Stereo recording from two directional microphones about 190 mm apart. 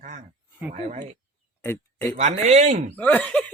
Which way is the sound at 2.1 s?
35° right (ahead or behind).